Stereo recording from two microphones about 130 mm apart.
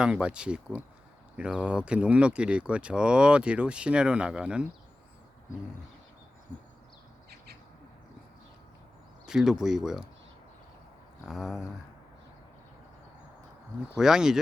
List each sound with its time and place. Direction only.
0.0 s speech: 10° right (ahead or behind)
9.2 s speech: 5° right (ahead or behind)
11.3 s speech: centre (ahead or behind)
14.0 s speech: 5° right (ahead or behind)